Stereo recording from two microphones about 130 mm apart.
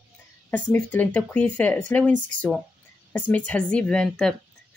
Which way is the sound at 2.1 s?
85° right.